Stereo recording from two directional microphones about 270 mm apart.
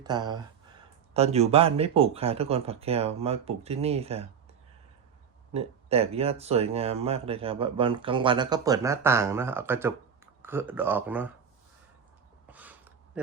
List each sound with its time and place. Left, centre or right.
0.0 s speech: centre
5.5 s speech: right; by 11.3 s centre
12.5 s a sound: centre